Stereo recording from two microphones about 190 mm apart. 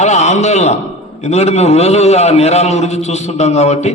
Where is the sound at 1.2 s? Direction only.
35° left (ahead or behind).